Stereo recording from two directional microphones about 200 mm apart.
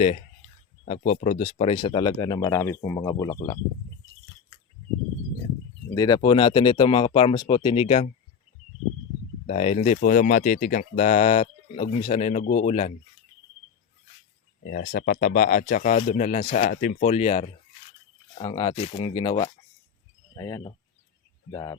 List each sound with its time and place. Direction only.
0.9 s speech: 35° left (ahead or behind); by 3.5 s 15° left (ahead or behind)
5.9 s speech: 20° left (ahead or behind)
9.5 s speech: 30° left (ahead or behind)
14.7 s speech: 45° left (ahead or behind); by 21.8 s 15° left (ahead or behind)